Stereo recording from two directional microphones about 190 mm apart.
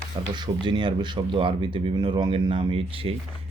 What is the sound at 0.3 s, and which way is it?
Speech, 25° right (ahead or behind).